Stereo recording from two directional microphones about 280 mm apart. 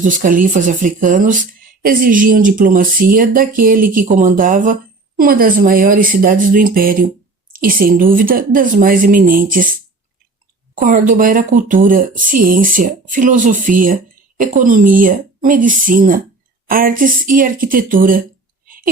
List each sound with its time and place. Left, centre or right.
0.0 s speech: right
10.8 s speech: right